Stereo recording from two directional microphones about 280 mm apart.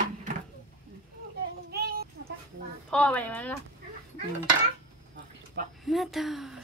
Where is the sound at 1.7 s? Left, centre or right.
Right.